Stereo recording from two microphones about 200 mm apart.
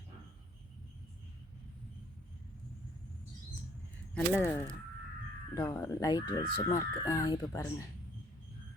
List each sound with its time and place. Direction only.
4.1 s speech: 5° left (ahead or behind)
5.5 s speech: 15° left (ahead or behind)